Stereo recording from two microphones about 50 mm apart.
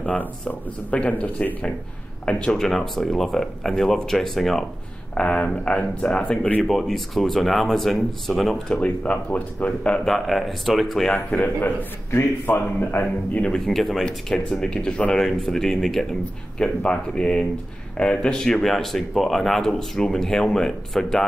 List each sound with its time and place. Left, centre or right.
0.0 s speech: left
2.6 s speech: centre
5.1 s speech: left
6.6 s speech: centre
8.8 s speech: left
10.0 s speech: centre
11.1 s speech: left
12.1 s speech: left
13.7 s speech: centre
14.0 s speech: centre
16.5 s speech: centre